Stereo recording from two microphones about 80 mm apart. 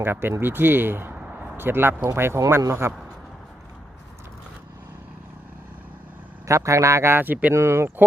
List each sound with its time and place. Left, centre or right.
0.0 s speech: right
1.1 s a sound: centre
1.5 s speech: right
6.5 s speech: right
7.5 s speech: right